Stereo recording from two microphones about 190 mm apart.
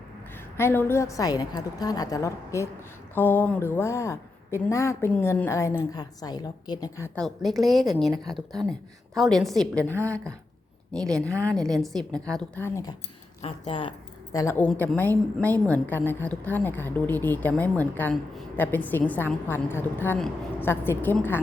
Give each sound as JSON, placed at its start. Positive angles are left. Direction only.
{"t": 0.5, "sound": "a woman's voice", "side_deg": 10}
{"t": 7.2, "sound": "a woman's voice", "side_deg": 0}
{"t": 9.9, "sound": "speech", "side_deg": -15}
{"t": 10.9, "sound": "a woman's voice", "side_deg": 5}
{"t": 13.4, "sound": "speech", "side_deg": 25}
{"t": 14.3, "sound": "a woman's voice", "side_deg": 15}